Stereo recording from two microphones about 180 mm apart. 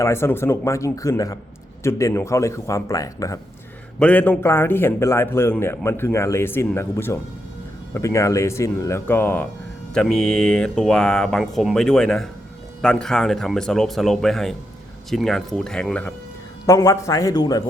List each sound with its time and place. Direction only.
0.0 s a man's voice: 15° left (ahead or behind)
16.6 s speech: 20° left (ahead or behind)